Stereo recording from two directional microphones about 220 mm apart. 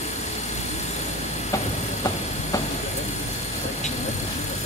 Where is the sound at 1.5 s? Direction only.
15° left (ahead or behind).